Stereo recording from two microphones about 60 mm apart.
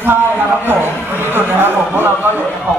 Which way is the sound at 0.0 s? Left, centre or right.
Right.